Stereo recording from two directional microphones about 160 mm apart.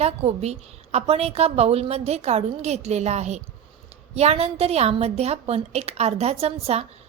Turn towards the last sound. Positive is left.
turn(degrees=-40)  # may be behind; listen again after turning